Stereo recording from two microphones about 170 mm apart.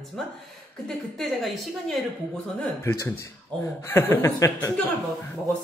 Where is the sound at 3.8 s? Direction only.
15° left (ahead or behind).